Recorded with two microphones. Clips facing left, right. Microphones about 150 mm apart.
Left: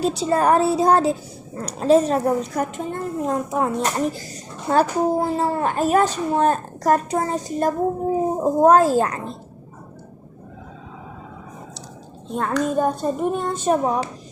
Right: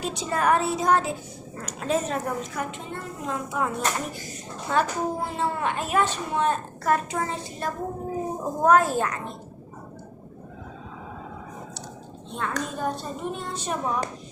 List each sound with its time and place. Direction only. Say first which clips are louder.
0.0 s a child's voice: left 7 dB; 35° left (ahead or behind)
8.4 s a child's voice: left 5 dB; 30° left (ahead or behind)
12.3 s speech: left 9 dB; 45° left (ahead or behind)